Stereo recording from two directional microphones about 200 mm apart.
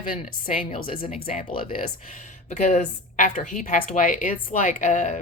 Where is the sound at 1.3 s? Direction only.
45° left (ahead or behind).